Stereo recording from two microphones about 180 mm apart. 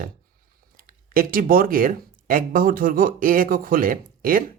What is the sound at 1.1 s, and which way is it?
Speech, 55° right (ahead or behind).